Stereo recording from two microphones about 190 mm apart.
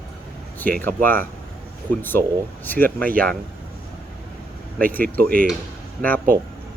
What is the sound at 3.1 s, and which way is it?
Speech, 50° right (ahead or behind).